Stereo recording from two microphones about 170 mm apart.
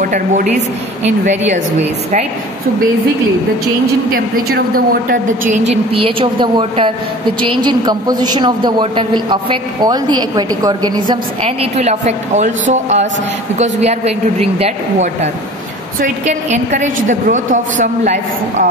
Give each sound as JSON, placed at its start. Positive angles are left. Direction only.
{"t": 0.0, "sound": "a woman's voice", "side_deg": -50}
{"t": 4.1, "sound": "a woman's voice", "side_deg": -60}
{"t": 5.7, "sound": "a woman's voice", "side_deg": -35}
{"t": 11.4, "sound": "a woman's voice", "side_deg": -40}